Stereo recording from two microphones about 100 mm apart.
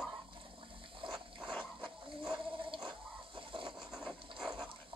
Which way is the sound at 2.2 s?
55° right (ahead or behind).